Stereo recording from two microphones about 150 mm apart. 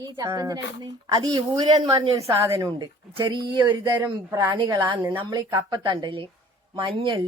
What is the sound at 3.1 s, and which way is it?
Speech, 35° right (ahead or behind).